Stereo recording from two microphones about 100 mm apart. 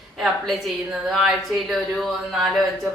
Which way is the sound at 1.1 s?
Centre (ahead or behind).